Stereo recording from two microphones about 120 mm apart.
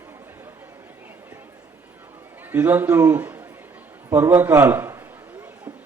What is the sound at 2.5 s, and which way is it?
A man's voice, 15° right (ahead or behind).